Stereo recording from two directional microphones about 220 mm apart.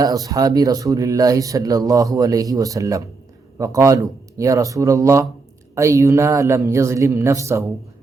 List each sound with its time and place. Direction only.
0.0 s speech: 15° right (ahead or behind)